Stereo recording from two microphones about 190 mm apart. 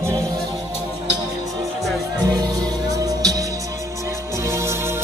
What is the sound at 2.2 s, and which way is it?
Music, 20° right (ahead or behind).